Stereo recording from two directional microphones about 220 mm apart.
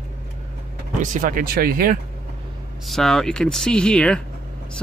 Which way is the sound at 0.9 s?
35° right (ahead or behind).